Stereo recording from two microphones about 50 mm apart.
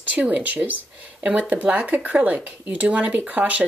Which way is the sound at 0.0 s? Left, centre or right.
Right.